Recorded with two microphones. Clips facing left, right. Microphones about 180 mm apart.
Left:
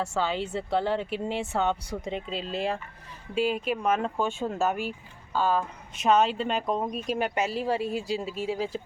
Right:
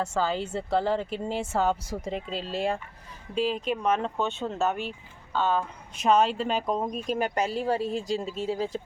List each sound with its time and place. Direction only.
0.0 s speech: 5° left (ahead or behind)